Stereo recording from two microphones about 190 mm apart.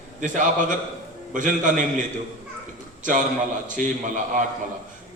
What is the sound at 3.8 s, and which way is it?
Speech, 40° right (ahead or behind).